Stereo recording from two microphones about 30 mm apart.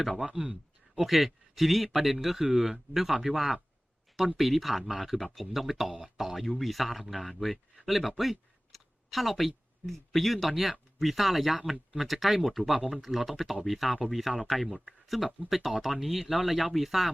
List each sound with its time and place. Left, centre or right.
1.0 s a man's voice: centre
6.6 s speech: centre